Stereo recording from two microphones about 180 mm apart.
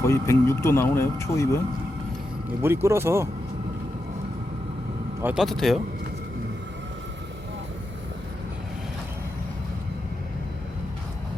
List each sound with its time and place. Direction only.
0.0 s speech: 15° left (ahead or behind)
2.6 s speech: 15° right (ahead or behind)
5.2 s speech: 5° right (ahead or behind)